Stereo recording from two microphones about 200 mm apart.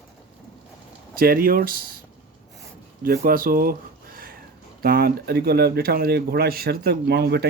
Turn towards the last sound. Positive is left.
turn(degrees=-55)  # may be behind; listen again after turning